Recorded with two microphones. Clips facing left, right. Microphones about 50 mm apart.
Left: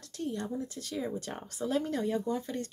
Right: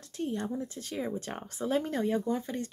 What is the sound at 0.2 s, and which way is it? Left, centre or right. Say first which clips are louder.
Speech: right 2 dB; right.